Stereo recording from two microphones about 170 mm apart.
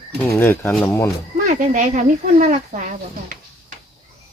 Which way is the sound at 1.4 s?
45° right (ahead or behind).